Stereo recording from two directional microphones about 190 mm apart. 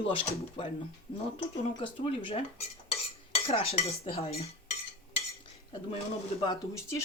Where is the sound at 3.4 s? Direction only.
30° left (ahead or behind).